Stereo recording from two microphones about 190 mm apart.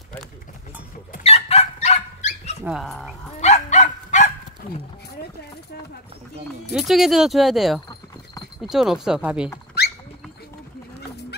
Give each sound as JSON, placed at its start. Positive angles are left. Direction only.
{"t": 1.2, "sound": "dog", "side_deg": 30}
{"t": 2.6, "sound": "speech", "side_deg": 0}
{"t": 3.3, "sound": "dog", "side_deg": 35}
{"t": 6.7, "sound": "speech", "side_deg": 0}
{"t": 9.8, "sound": "horse", "side_deg": 60}